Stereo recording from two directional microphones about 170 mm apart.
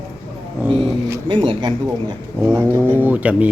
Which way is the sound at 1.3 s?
30° right (ahead or behind).